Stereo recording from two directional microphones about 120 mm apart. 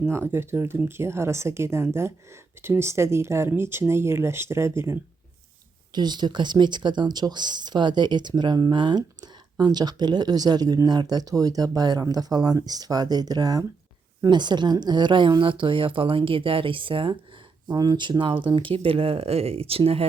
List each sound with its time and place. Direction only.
0.0 s a woman's voice: 20° right (ahead or behind)
5.9 s a woman's voice: 35° right (ahead or behind)
17.7 s a woman's voice: 35° right (ahead or behind); by 20.1 s 55° right (ahead or behind)